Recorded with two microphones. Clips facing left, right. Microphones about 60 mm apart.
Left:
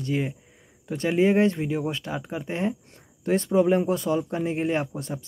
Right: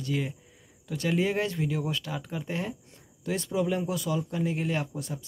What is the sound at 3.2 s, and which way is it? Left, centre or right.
Speech, left.